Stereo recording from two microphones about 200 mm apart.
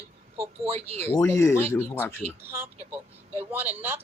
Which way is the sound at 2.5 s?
10° right (ahead or behind).